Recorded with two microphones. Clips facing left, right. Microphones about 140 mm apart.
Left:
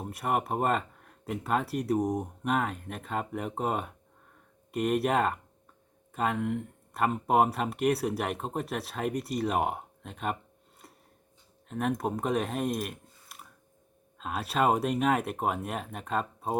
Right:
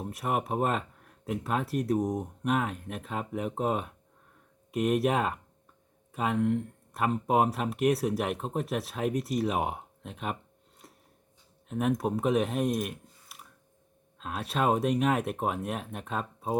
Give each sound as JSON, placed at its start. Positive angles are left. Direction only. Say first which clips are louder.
{"t": 0.0, "sound": "speech", "louder": "left 1 dB", "side_deg": 0}
{"t": 10.8, "sound": "a sound", "louder": "even", "side_deg": 0}
{"t": 11.7, "sound": "speech", "louder": "right 2 dB", "side_deg": 0}